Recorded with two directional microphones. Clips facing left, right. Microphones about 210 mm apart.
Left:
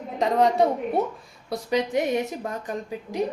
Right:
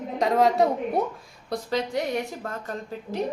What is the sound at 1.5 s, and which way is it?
Speech, 15° left (ahead or behind).